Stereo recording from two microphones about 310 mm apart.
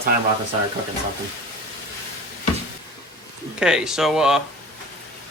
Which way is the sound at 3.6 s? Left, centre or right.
Centre.